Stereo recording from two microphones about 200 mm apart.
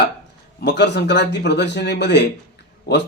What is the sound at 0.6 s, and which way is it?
Speech, 55° left (ahead or behind).